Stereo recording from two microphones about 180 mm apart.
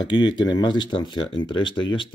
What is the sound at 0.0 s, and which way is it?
Speech, 90° left.